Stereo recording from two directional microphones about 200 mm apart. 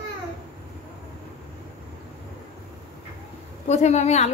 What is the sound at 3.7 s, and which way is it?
Speech, 35° left (ahead or behind).